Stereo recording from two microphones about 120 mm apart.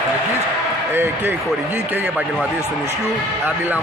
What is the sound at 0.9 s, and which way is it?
Speech, 20° right (ahead or behind).